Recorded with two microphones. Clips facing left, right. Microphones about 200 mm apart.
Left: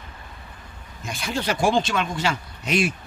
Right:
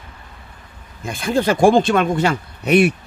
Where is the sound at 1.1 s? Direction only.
50° right (ahead or behind).